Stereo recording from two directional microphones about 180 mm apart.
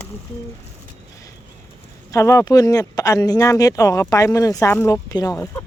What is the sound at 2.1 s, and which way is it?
Speech, 15° left (ahead or behind).